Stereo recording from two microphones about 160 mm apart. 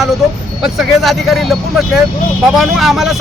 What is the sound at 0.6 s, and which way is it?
Speech, centre (ahead or behind).